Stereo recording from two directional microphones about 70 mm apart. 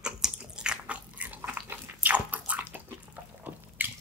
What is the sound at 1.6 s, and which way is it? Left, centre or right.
Bathtub, right.